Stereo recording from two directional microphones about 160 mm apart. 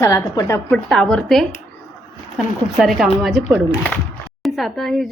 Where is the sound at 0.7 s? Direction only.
5° left (ahead or behind).